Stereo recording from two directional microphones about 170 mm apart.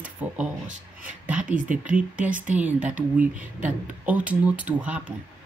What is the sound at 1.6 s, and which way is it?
Speech, 50° right (ahead or behind).